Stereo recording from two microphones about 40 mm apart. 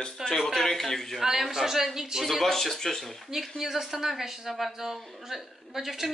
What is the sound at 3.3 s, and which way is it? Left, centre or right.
Speech, centre.